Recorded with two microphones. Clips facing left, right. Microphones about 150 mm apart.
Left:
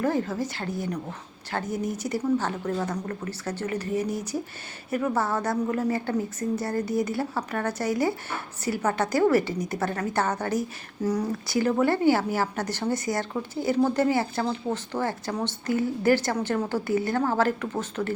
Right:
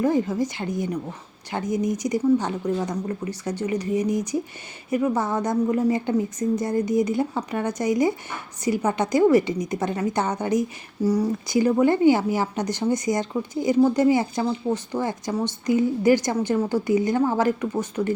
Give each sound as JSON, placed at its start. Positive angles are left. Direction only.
{"t": 0.0, "sound": "a woman's voice", "side_deg": -15}